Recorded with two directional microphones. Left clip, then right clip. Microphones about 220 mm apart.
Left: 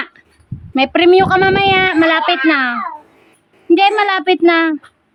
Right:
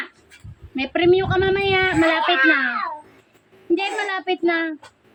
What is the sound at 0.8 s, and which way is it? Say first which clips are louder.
Speech: left 8 dB; 50° left (ahead or behind).